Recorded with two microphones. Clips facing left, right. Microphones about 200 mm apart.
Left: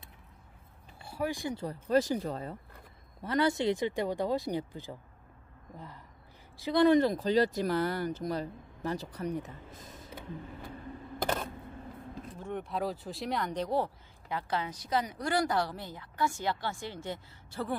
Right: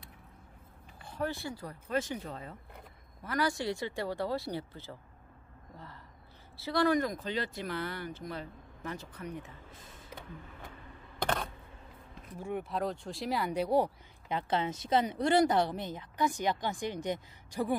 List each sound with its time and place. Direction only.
1.0 s speech: 10° left (ahead or behind); by 2.5 s 40° left (ahead or behind)
3.2 s speech: 25° left (ahead or behind)
6.5 s speech: 20° left (ahead or behind); by 10.0 s 40° left (ahead or behind)
12.4 s speech: 10° right (ahead or behind)